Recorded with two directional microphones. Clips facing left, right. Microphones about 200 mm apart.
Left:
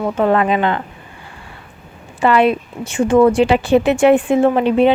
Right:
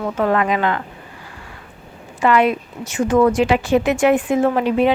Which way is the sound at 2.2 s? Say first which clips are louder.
Left 2 dB; 30° left (ahead or behind).